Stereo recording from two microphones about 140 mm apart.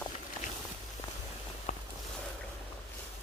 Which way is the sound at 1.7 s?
55° left (ahead or behind).